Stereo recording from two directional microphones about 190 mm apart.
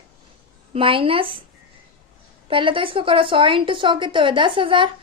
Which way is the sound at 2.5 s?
25° right (ahead or behind).